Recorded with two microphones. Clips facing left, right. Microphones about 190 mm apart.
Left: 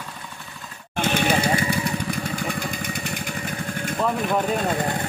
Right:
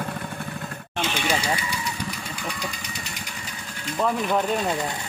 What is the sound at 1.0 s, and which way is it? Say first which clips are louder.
Vehicle: left 5 dB; 55° left (ahead or behind).